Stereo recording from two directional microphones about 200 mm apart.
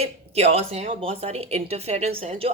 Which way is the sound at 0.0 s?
30° right (ahead or behind).